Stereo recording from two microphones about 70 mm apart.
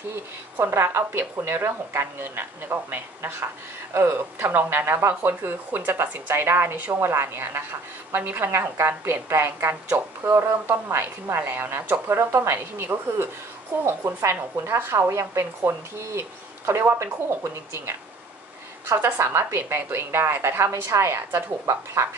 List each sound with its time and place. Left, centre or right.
0.1 s a woman's voice: right
5.9 s a woman's voice: right